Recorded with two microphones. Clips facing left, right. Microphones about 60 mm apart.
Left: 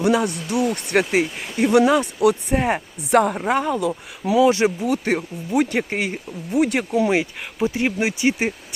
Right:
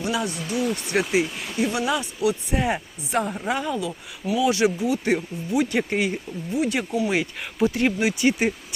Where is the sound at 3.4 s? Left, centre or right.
Left.